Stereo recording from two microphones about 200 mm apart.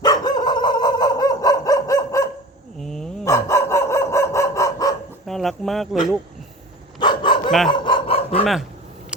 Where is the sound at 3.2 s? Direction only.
15° left (ahead or behind).